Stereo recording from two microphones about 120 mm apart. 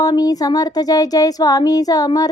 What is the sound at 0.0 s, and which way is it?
Speech, 30° left (ahead or behind).